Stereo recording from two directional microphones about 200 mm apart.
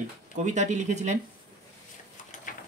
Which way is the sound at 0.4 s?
35° right (ahead or behind).